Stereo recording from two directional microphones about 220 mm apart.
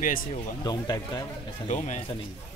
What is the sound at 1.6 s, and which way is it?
Speech, 35° left (ahead or behind).